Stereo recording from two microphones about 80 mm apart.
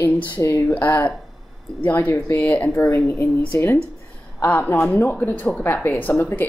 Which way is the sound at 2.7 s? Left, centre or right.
Left.